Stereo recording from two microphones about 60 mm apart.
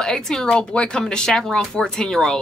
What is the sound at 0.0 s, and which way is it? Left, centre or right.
A woman's voice, centre.